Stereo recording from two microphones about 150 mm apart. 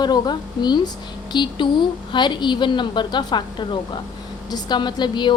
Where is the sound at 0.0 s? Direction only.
30° left (ahead or behind).